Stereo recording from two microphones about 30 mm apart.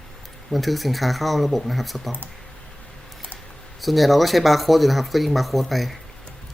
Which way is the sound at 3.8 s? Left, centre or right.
Centre.